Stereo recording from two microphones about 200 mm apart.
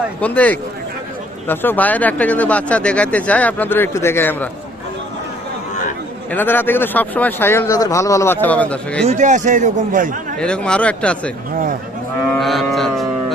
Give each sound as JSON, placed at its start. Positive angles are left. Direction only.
{"t": 0.2, "sound": "speech", "side_deg": 10}
{"t": 6.3, "sound": "speech", "side_deg": 10}
{"t": 9.0, "sound": "speech", "side_deg": -35}
{"t": 10.4, "sound": "speech", "side_deg": 5}
{"t": 12.4, "sound": "speech", "side_deg": 0}